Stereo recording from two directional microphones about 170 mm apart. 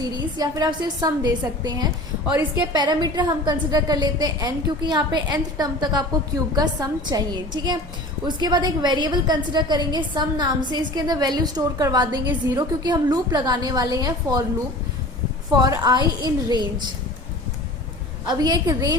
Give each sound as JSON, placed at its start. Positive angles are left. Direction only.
{"t": 0.0, "sound": "a woman's voice", "side_deg": -25}
{"t": 2.2, "sound": "a woman's voice", "side_deg": -10}
{"t": 2.7, "sound": "a woman's voice", "side_deg": -25}
{"t": 15.5, "sound": "a woman's voice", "side_deg": -25}
{"t": 18.3, "sound": "a woman's voice", "side_deg": -25}